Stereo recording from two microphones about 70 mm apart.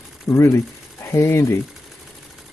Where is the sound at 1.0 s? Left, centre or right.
Left.